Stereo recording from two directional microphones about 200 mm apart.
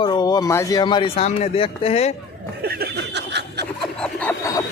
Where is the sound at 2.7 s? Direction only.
55° right (ahead or behind).